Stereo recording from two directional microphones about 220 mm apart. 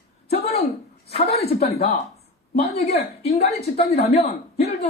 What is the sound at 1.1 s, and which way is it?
Speech, 30° left (ahead or behind).